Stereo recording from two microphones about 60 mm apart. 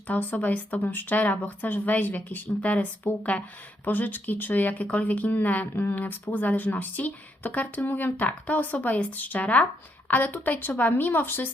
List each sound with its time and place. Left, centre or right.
0.1 s speech: left